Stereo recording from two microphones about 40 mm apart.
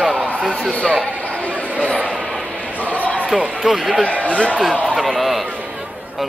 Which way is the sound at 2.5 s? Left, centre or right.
Left.